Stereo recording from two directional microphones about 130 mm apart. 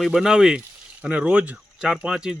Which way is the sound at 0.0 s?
5° right (ahead or behind).